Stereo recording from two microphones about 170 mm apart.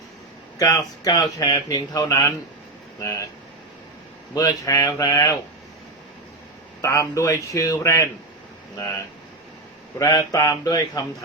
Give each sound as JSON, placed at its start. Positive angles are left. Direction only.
{"t": 0.6, "sound": "speech", "side_deg": 20}
{"t": 4.4, "sound": "speech", "side_deg": 20}
{"t": 6.8, "sound": "speech", "side_deg": 20}
{"t": 10.0, "sound": "speech", "side_deg": 20}